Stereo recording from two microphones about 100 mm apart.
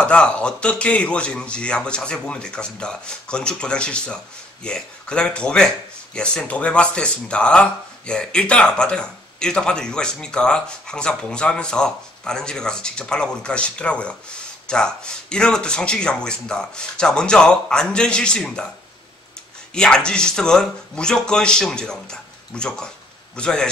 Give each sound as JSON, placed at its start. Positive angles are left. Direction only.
{"t": 0.0, "sound": "speech", "side_deg": 10}
{"t": 19.7, "sound": "speech", "side_deg": 10}